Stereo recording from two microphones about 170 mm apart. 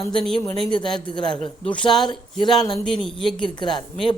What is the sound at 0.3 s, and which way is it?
A man's voice, 30° left (ahead or behind).